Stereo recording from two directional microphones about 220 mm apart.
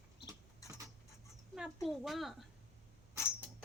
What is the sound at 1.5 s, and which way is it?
Speech, centre (ahead or behind).